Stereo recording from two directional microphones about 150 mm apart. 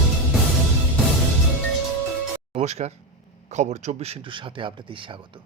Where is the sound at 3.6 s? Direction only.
50° right (ahead or behind).